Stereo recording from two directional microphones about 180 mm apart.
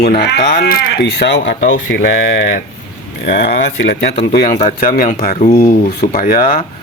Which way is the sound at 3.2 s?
70° left (ahead or behind).